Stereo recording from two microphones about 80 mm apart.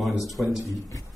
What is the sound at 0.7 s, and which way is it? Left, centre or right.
Speech, left.